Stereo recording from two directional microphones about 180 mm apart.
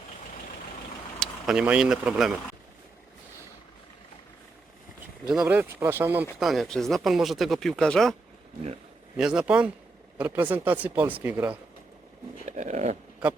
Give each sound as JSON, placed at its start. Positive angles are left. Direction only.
{"t": 1.2, "sound": "speech", "side_deg": -5}
{"t": 5.3, "sound": "speech", "side_deg": -5}
{"t": 6.4, "sound": "speech", "side_deg": 0}
{"t": 9.1, "sound": "speech", "side_deg": -5}
{"t": 12.5, "sound": "dog", "side_deg": -40}